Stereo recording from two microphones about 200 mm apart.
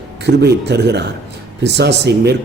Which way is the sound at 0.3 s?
60° right (ahead or behind).